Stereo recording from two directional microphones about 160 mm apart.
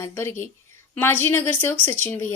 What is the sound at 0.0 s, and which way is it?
A woman's voice, 15° left (ahead or behind).